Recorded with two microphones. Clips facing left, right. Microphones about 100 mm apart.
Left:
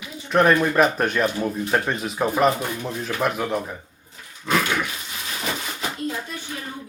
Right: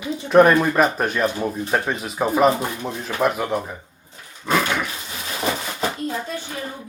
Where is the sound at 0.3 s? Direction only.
5° right (ahead or behind).